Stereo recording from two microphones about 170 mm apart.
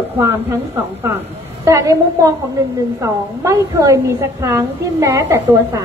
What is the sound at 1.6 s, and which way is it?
A woman's voice, 20° right (ahead or behind).